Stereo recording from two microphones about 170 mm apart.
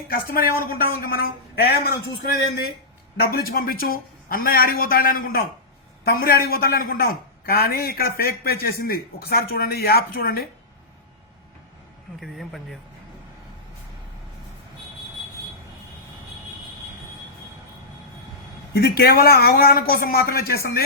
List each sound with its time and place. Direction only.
0.1 s a man's voice: 60° left (ahead or behind)
3.2 s a man's voice: 60° left (ahead or behind)
12.2 s speech: centre (ahead or behind)
18.7 s a man's voice: 70° left (ahead or behind)